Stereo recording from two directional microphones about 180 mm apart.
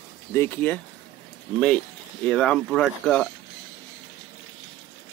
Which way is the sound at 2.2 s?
5° left (ahead or behind).